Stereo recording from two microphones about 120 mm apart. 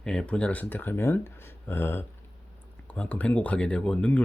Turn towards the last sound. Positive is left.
turn(degrees=10)  # may be behind; listen again after turning